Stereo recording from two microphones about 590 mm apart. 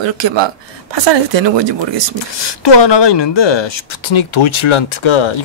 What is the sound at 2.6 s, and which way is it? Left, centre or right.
Speech, left.